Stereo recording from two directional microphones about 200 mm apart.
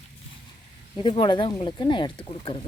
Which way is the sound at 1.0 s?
25° left (ahead or behind).